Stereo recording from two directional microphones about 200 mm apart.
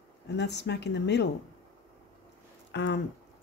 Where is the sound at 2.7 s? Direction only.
60° left (ahead or behind).